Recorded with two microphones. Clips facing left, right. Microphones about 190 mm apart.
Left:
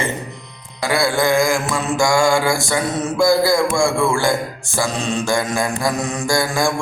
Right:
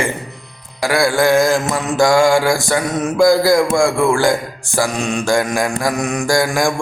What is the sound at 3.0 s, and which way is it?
Mantra, 15° right (ahead or behind).